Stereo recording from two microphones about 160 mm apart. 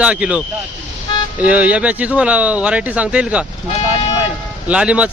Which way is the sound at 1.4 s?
10° right (ahead or behind).